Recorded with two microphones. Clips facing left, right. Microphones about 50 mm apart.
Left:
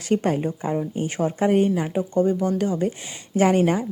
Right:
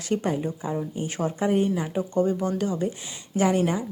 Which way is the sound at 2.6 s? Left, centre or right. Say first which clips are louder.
Left 3 dB; left.